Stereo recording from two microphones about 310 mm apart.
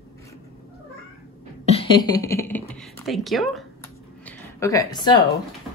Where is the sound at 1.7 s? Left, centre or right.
Centre.